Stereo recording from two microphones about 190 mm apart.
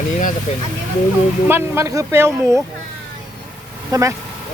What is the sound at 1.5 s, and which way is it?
Speech, 10° right (ahead or behind).